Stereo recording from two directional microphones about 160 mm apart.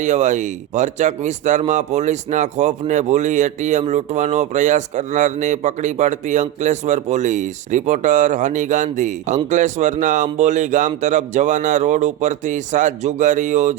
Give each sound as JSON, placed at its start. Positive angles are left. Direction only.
{"t": 0.0, "sound": "speech", "side_deg": -50}